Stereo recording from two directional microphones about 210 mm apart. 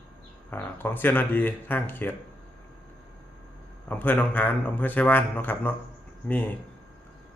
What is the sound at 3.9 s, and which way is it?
Speech, 10° left (ahead or behind).